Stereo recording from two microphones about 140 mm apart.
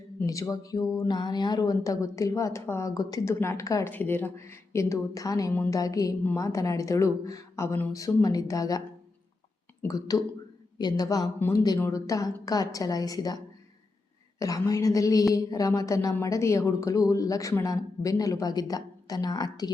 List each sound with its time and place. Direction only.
0.2 s speech: 25° left (ahead or behind)
9.8 s speech: 25° left (ahead or behind)